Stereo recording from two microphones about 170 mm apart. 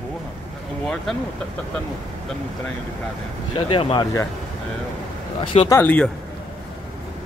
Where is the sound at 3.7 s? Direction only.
30° left (ahead or behind).